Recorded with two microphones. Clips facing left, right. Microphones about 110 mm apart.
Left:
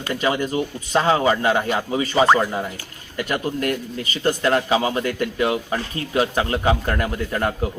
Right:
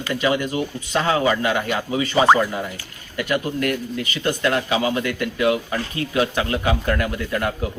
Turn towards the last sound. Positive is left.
turn(degrees=30)  # may be behind; listen again after turning